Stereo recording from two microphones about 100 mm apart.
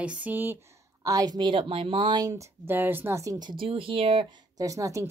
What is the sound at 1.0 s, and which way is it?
A woman's voice, 35° right (ahead or behind).